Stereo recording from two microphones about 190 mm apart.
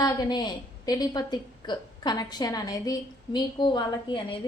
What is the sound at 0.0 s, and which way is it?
A woman's voice, 20° left (ahead or behind).